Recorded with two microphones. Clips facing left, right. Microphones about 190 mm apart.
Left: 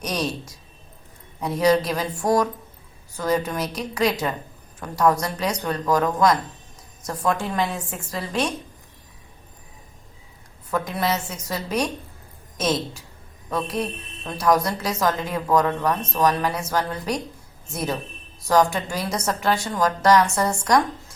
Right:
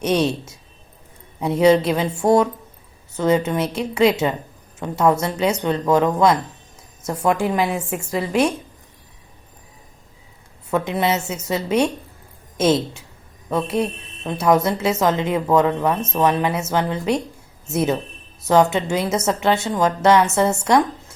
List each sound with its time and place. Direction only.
0.0 s a woman's voice: 25° right (ahead or behind)
7.7 s a woman's voice: 10° right (ahead or behind)
10.7 s a woman's voice: 25° right (ahead or behind)